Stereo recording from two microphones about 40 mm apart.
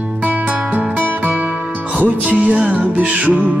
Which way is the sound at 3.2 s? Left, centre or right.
Right.